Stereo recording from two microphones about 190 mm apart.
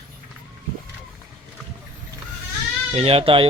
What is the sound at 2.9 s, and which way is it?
Speech, 30° right (ahead or behind).